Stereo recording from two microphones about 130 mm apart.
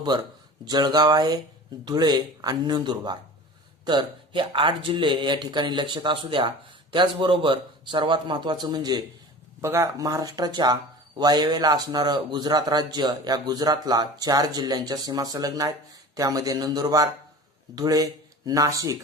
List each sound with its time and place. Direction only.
0.6 s speech: 30° right (ahead or behind)
9.6 s speech: 20° right (ahead or behind)